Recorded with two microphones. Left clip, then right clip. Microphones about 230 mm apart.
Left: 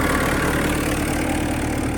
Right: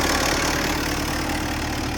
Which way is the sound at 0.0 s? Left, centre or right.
Right.